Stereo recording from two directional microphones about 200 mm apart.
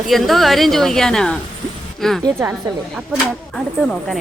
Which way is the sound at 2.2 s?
15° right (ahead or behind).